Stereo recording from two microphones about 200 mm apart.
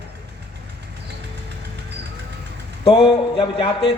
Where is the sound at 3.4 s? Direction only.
25° left (ahead or behind).